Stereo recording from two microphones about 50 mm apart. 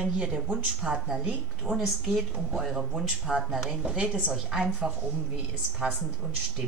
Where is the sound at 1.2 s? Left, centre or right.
Centre.